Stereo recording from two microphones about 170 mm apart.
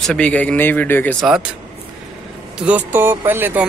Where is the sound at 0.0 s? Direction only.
5° left (ahead or behind).